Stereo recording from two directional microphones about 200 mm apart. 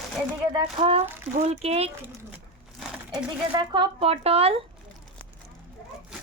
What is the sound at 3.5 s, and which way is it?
Speech, 25° right (ahead or behind).